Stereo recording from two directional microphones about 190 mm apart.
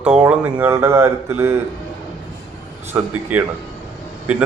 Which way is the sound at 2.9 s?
15° right (ahead or behind).